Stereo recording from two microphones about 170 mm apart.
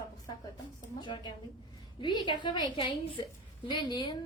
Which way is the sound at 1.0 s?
25° left (ahead or behind).